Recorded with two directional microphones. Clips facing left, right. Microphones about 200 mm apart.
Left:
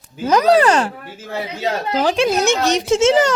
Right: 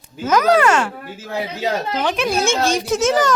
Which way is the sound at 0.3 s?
35° left (ahead or behind).